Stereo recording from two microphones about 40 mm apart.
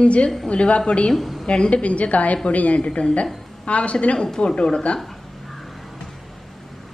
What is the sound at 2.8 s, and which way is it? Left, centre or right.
Speech, left.